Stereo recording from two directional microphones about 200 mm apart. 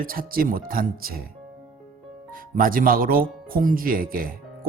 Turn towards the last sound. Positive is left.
turn(degrees=-45)  # may be behind; listen again after turning